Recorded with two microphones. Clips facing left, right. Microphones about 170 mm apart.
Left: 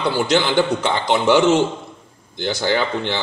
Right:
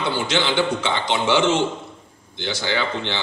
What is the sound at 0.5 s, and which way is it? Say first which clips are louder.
A man's voice: left 3 dB; 45° left (ahead or behind).